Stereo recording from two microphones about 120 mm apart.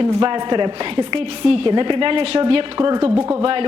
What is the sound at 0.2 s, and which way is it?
A woman's voice, 40° right (ahead or behind).